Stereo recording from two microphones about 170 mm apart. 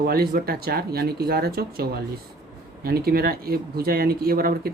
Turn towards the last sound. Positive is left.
turn(degrees=-60)  # may be behind; listen again after turning